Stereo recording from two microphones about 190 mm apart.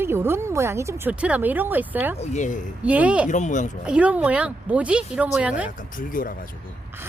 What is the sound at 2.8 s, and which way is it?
Speech, 5° right (ahead or behind).